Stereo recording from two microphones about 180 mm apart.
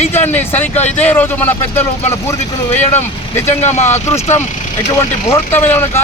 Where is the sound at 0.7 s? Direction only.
40° left (ahead or behind).